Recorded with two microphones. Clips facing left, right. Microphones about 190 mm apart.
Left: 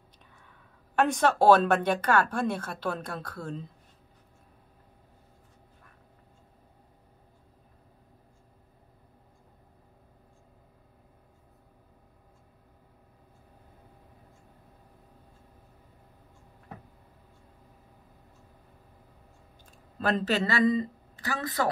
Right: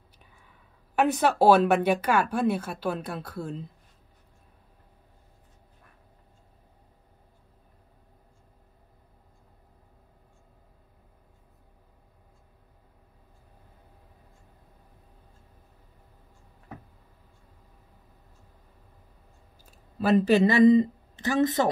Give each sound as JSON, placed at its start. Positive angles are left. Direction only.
{"t": 0.4, "sound": "speech", "side_deg": -10}
{"t": 19.6, "sound": "speech", "side_deg": -5}